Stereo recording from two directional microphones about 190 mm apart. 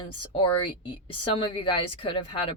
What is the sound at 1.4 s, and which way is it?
Speech, 25° left (ahead or behind).